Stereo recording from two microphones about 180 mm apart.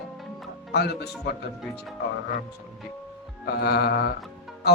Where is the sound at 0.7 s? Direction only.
65° left (ahead or behind).